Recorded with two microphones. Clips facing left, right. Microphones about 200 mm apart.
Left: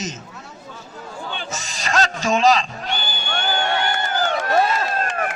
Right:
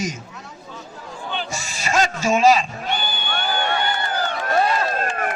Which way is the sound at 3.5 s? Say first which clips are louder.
Left 1 dB; 90° left.